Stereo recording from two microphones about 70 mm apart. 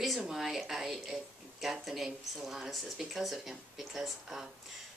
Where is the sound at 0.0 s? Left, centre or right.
Centre.